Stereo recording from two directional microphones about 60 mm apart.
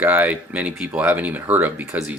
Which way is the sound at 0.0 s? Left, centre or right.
Right.